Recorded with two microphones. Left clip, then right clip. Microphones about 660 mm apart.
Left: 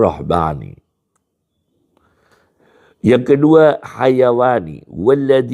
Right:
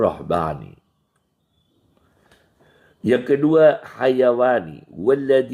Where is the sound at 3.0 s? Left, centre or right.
Left.